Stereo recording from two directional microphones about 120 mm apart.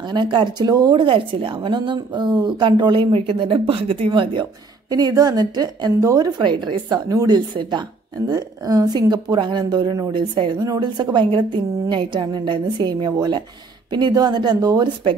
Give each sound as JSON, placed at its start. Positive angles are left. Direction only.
{"t": 0.1, "sound": "a woman's voice", "side_deg": -40}